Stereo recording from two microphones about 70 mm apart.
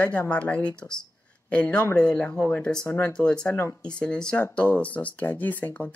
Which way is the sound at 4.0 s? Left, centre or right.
Centre.